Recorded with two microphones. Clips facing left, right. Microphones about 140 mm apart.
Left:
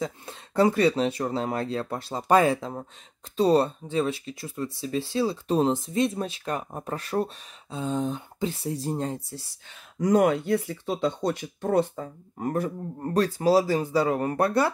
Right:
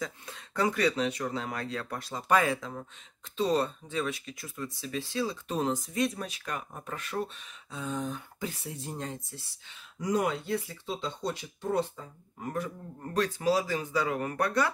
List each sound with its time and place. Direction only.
0.0 s speech: 30° left (ahead or behind)
9.7 s speech: 50° left (ahead or behind); by 14.7 s 30° left (ahead or behind)